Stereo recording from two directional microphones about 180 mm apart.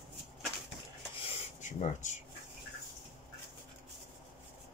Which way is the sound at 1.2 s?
40° left (ahead or behind).